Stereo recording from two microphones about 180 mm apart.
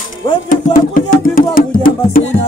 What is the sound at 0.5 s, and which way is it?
Speech, 50° left (ahead or behind).